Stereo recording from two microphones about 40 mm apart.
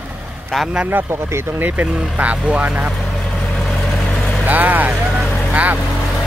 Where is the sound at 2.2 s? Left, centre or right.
Right.